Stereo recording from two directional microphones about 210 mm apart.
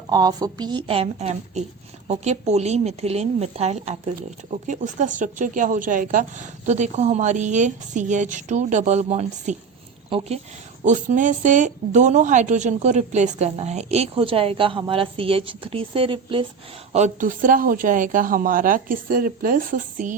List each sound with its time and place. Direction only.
0.1 s a woman's voice: 20° right (ahead or behind)
16.9 s speech: 35° right (ahead or behind)